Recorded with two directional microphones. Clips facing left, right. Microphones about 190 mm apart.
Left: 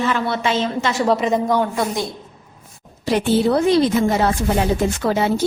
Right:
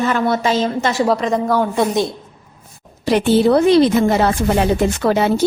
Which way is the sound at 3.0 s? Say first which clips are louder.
Right 4 dB; 70° right (ahead or behind).